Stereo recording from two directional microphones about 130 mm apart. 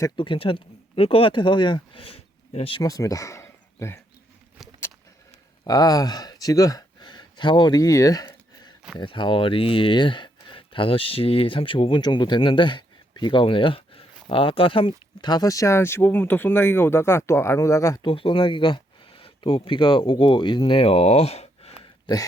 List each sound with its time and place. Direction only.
0.2 s speech: 45° left (ahead or behind)
2.8 s speech: 25° left (ahead or behind)
5.6 s speech: 30° left (ahead or behind)
18.0 s speech: 40° left (ahead or behind)
22.0 s speech: 30° left (ahead or behind)